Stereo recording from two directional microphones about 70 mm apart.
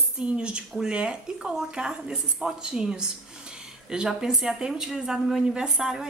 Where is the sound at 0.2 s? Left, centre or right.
Centre.